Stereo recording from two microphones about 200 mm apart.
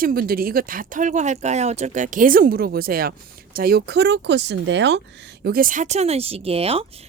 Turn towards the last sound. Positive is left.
turn(degrees=-30)  # may be behind; listen again after turning